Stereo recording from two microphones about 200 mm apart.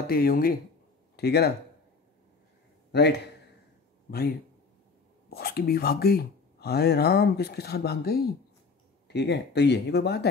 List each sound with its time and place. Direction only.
0.0 s speech: 50° left (ahead or behind)
2.9 s a man's voice: 55° left (ahead or behind)
5.3 s speech: 50° left (ahead or behind)